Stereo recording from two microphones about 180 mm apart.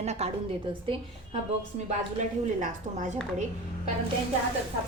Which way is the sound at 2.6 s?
40° right (ahead or behind).